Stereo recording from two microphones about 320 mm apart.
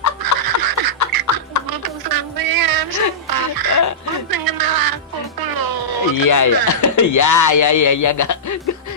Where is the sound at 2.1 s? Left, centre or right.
Right.